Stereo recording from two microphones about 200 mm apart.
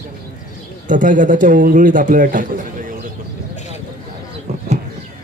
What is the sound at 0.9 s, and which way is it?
A man's voice, 40° right (ahead or behind).